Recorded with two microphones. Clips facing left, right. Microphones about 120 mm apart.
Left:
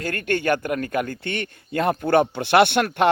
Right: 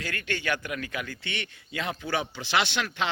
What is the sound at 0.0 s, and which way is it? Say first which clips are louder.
A man's voice: left 9 dB; 50° left (ahead or behind).